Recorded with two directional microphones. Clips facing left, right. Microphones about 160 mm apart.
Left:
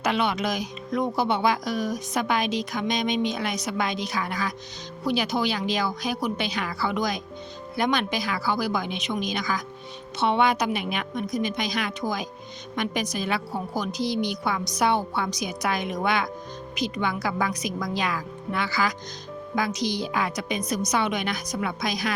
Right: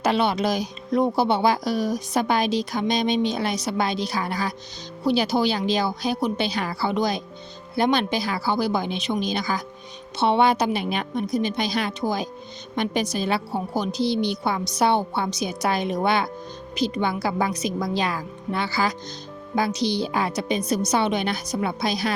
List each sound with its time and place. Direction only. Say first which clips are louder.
0.0 s a woman's voice: right 3 dB; 35° right (ahead or behind)